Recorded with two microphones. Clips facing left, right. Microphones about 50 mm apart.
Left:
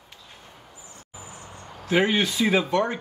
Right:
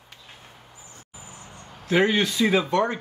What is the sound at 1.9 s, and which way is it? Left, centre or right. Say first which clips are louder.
Speech: right 1 dB; centre.